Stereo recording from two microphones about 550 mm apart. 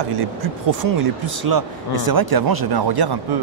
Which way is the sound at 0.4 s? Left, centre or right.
Right.